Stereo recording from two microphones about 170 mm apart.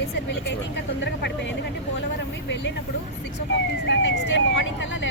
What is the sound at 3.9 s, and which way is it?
Speech, 90° left.